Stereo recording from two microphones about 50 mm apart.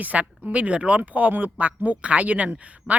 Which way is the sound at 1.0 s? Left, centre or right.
Right.